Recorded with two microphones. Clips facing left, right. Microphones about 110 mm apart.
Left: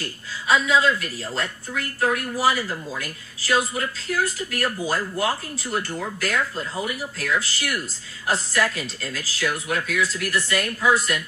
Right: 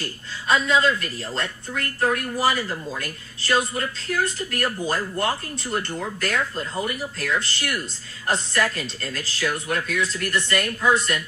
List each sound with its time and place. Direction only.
0.0 s speech: centre (ahead or behind)